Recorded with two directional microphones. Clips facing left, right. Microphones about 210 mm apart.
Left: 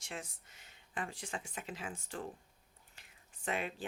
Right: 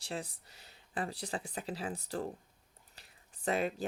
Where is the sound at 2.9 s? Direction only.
35° right (ahead or behind).